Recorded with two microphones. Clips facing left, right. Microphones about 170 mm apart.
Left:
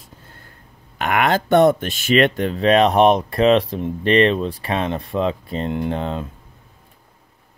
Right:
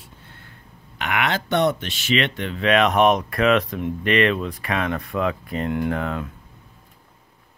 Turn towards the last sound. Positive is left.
turn(degrees=25)  # may be behind; listen again after turning